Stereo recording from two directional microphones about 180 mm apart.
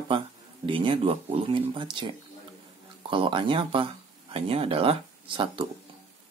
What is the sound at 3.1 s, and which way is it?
Speech, 30° right (ahead or behind).